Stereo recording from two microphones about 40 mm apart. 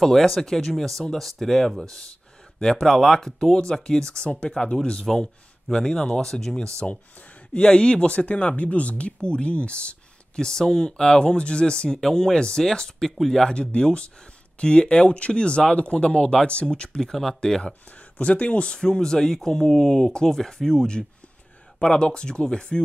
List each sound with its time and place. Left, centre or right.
0.0 s speech: centre; by 4.7 s left
5.0 s speech: centre; by 9.9 s left
10.3 s speech: centre
13.6 s speech: left
17.0 s speech: centre
17.9 s speech: left